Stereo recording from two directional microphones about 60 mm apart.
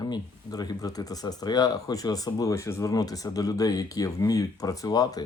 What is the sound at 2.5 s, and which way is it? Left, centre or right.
Speech, left.